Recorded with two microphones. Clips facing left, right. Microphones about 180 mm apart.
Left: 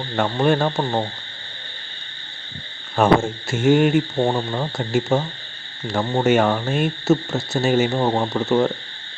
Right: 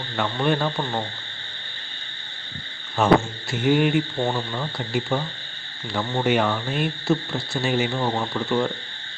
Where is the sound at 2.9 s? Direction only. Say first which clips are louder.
Left 2 dB; 50° left (ahead or behind).